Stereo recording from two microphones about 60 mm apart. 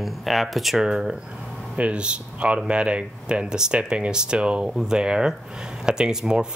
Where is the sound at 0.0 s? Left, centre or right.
Centre.